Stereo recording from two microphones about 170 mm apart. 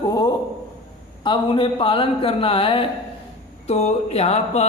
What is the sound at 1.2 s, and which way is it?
Speech, 30° left (ahead or behind).